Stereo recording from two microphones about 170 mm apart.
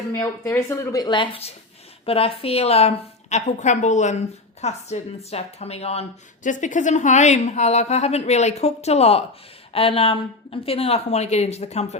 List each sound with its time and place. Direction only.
0.1 s speech: 15° left (ahead or behind); by 11.9 s 40° left (ahead or behind)